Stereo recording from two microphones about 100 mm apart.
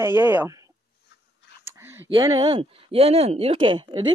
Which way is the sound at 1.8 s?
20° right (ahead or behind).